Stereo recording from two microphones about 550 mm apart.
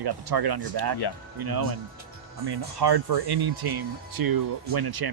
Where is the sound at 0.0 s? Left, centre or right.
Right.